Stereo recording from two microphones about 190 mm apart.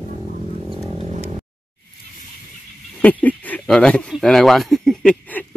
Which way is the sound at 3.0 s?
10° left (ahead or behind).